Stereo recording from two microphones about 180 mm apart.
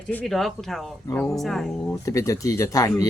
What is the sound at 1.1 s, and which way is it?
Speech, 15° left (ahead or behind).